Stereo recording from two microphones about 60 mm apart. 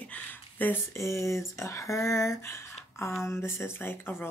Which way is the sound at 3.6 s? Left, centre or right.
Left.